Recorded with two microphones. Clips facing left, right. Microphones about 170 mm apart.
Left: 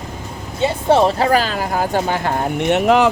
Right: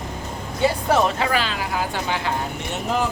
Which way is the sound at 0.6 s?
25° left (ahead or behind).